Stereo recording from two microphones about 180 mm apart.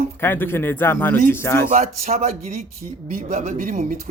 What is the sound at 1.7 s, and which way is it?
Speech, 40° right (ahead or behind).